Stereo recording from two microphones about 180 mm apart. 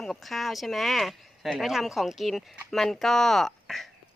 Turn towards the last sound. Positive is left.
turn(degrees=0)  # may be behind; listen again after turning